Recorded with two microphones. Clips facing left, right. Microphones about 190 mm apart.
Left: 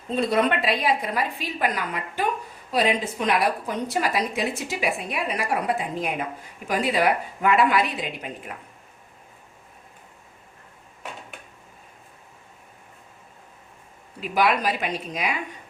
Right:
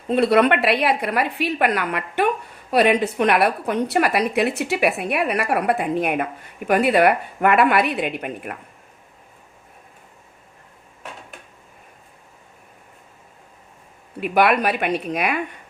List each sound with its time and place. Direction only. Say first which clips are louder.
0.1 s a woman's voice: right 6 dB; 70° right (ahead or behind)
14.2 s a woman's voice: right 5 dB; 60° right (ahead or behind)